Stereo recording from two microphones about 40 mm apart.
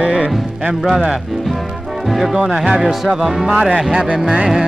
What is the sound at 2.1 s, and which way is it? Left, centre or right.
Speech, centre.